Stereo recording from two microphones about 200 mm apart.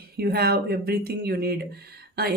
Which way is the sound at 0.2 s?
50° right (ahead or behind).